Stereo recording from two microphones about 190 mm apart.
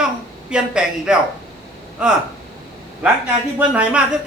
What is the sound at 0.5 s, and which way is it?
A man's voice, 5° right (ahead or behind).